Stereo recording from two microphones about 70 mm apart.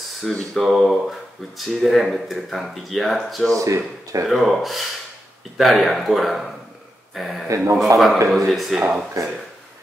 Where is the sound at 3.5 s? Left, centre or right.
Right.